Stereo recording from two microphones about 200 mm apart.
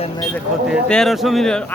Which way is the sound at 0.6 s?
Centre (ahead or behind).